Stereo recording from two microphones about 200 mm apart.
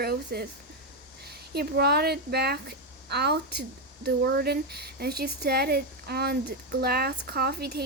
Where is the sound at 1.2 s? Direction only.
55° right (ahead or behind).